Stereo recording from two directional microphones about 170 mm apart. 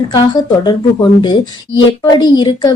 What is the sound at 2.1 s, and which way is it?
Speech, 25° left (ahead or behind).